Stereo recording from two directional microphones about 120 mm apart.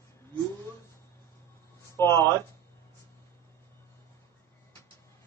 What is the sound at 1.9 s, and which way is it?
Speech, 20° left (ahead or behind).